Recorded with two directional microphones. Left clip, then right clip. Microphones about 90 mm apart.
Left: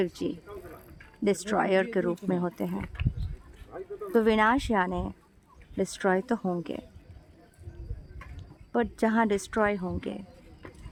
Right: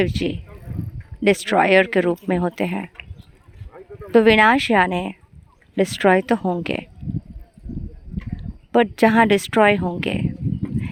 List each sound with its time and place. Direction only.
0.0 s speech: 35° right (ahead or behind)
2.8 s speech: 25° right (ahead or behind)
4.1 s speech: 50° right (ahead or behind)
8.7 s a woman's voice: 55° right (ahead or behind)